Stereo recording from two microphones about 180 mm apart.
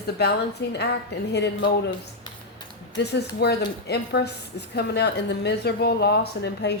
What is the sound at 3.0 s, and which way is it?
A woman's voice, 65° left (ahead or behind).